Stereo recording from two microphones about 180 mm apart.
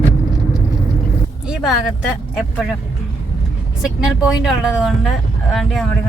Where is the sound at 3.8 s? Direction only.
5° right (ahead or behind).